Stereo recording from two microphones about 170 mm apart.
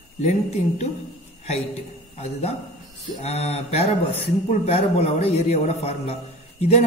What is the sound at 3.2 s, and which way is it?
A man's voice, 40° left (ahead or behind).